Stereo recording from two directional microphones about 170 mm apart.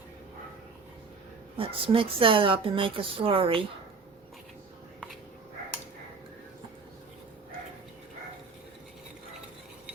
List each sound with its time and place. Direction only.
1.5 s a woman's voice: 30° right (ahead or behind)